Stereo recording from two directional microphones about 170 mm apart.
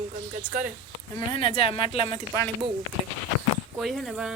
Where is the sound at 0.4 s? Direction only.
10° right (ahead or behind).